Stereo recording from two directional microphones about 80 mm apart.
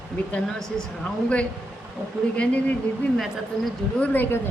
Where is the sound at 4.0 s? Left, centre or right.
Left.